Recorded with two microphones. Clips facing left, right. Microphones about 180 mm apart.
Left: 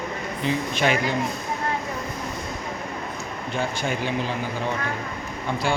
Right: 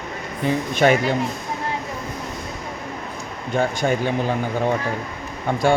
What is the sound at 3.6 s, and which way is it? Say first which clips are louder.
Speech: right 6 dB; 45° right (ahead or behind).